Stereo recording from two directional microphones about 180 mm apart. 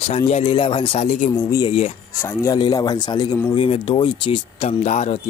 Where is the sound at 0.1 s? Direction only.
35° left (ahead or behind).